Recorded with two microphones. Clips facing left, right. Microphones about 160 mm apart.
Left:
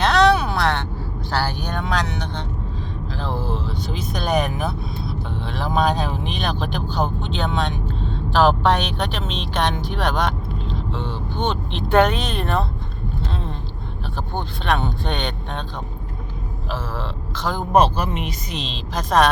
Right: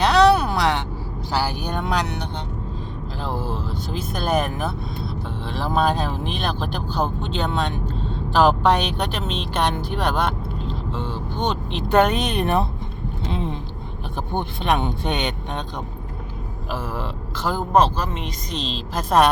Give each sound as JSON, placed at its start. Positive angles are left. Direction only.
{"t": 0.0, "sound": "a sound", "side_deg": -5}
{"t": 1.3, "sound": "music", "side_deg": -10}
{"t": 3.2, "sound": "speech", "side_deg": -10}
{"t": 13.3, "sound": "a sound", "side_deg": -15}
{"t": 14.3, "sound": "speech", "side_deg": -20}
{"t": 16.7, "sound": "speech", "side_deg": -10}
{"t": 17.7, "sound": "speech", "side_deg": 15}